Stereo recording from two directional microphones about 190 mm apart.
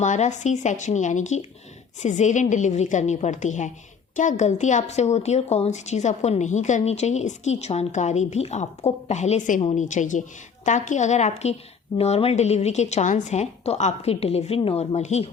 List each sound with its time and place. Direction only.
0.0 s a woman's voice: 40° left (ahead or behind)